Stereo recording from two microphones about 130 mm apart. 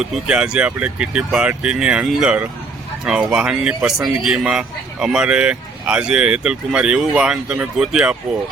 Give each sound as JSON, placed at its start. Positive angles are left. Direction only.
{"t": 0.0, "sound": "speech", "side_deg": -5}